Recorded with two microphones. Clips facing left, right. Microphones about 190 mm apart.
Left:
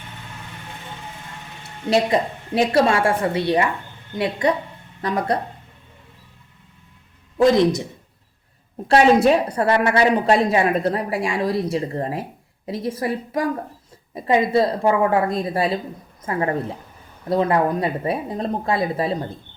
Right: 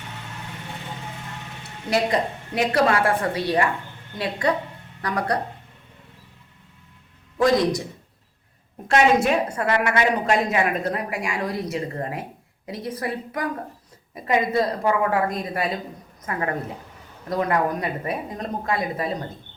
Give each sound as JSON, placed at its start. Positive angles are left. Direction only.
{"t": 2.6, "sound": "speech", "side_deg": 25}
{"t": 7.3, "sound": "speech", "side_deg": 25}
{"t": 8.9, "sound": "a woman's voice", "side_deg": 35}